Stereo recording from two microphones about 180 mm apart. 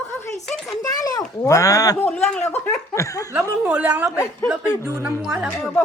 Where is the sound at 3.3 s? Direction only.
15° right (ahead or behind).